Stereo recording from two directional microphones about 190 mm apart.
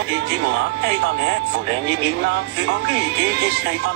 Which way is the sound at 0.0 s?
65° right (ahead or behind).